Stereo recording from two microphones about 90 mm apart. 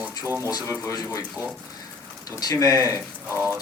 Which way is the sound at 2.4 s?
45° left (ahead or behind).